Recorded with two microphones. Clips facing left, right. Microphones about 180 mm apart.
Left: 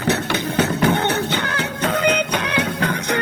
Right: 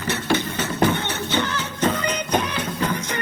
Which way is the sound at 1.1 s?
65° left (ahead or behind).